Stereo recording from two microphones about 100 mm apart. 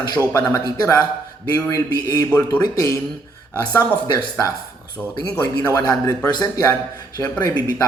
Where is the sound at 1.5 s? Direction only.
35° left (ahead or behind).